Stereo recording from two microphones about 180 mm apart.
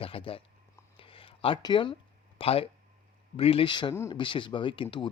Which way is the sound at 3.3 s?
30° left (ahead or behind).